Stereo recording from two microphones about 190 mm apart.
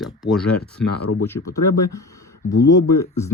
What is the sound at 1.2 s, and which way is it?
Speech, 15° left (ahead or behind).